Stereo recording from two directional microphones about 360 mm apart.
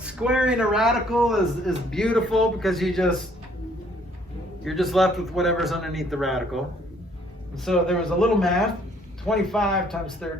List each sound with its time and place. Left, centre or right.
0.0 s a man's voice: centre
4.6 s a man's voice: centre